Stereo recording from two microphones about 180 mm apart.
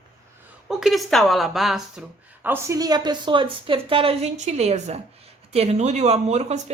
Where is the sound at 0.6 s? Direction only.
Centre (ahead or behind).